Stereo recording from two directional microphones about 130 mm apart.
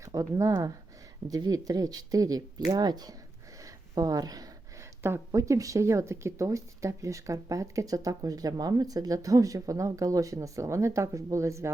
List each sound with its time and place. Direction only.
0.0 s speech: 25° right (ahead or behind)